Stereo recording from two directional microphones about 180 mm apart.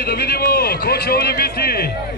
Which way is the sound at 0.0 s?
60° left (ahead or behind).